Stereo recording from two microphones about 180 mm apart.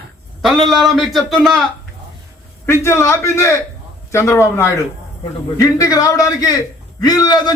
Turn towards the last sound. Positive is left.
turn(degrees=20)  # may be behind; listen again after turning